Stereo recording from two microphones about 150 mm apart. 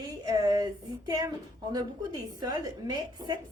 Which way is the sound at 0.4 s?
25° right (ahead or behind).